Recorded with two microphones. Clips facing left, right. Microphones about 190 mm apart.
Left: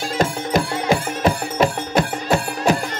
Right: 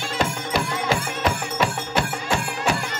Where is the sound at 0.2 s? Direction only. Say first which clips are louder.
Left 5 dB; 45° left (ahead or behind).